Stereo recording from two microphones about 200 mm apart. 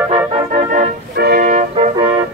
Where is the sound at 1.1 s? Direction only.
50° right (ahead or behind).